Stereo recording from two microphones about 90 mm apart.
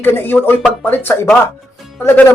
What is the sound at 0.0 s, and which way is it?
Speech, 25° left (ahead or behind).